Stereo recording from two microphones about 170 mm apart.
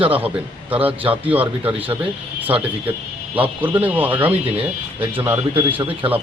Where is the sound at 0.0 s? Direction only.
10° right (ahead or behind).